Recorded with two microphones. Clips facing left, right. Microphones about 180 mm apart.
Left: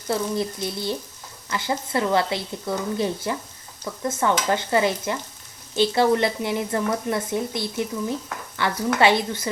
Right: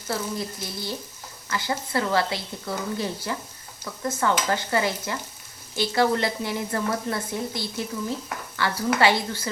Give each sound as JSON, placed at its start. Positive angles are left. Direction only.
{"t": 0.1, "sound": "speech", "side_deg": 20}